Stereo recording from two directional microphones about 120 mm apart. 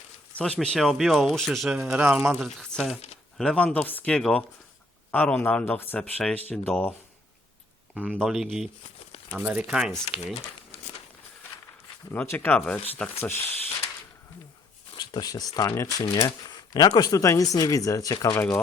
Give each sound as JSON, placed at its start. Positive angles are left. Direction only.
{"t": 0.3, "sound": "speech", "side_deg": 10}
{"t": 1.7, "sound": "speech", "side_deg": -10}
{"t": 2.3, "sound": "speech", "side_deg": 0}
{"t": 7.9, "sound": "speech", "side_deg": -10}
{"t": 8.2, "sound": "speech", "side_deg": 0}
{"t": 12.1, "sound": "speech", "side_deg": 20}
{"t": 14.9, "sound": "speech", "side_deg": 35}
{"t": 18.3, "sound": "speech", "side_deg": 20}